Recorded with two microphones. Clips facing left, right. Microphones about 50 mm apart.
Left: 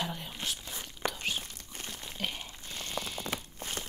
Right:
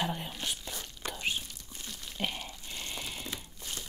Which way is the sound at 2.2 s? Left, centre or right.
Centre.